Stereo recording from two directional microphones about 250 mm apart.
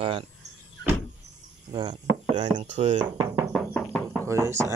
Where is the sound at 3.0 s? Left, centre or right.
Centre.